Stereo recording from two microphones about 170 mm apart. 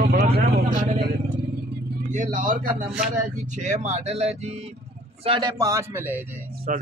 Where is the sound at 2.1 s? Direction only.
50° right (ahead or behind); by 5.5 s 30° right (ahead or behind).